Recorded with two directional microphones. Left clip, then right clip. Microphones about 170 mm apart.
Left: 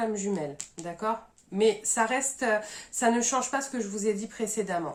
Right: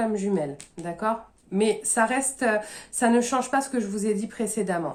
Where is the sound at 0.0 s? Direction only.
40° right (ahead or behind).